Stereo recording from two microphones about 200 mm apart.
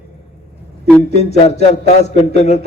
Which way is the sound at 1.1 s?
35° left (ahead or behind).